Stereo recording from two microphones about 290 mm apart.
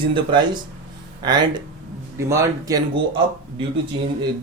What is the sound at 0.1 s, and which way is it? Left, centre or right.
Speech, centre.